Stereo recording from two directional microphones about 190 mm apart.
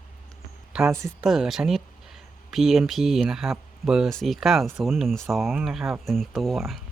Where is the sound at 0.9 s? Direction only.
15° right (ahead or behind).